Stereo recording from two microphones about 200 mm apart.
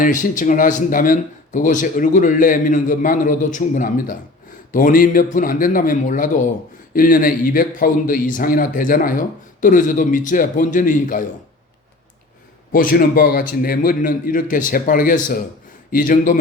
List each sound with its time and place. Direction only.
0.0 s a man's voice: 40° left (ahead or behind)
12.7 s a man's voice: 45° left (ahead or behind)